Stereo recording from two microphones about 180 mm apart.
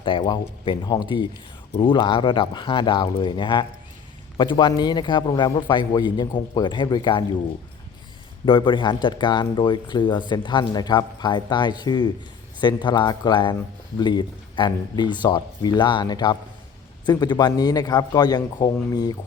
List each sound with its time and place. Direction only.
0.0 s speech: 25° left (ahead or behind)
8.4 s speech: 30° left (ahead or behind)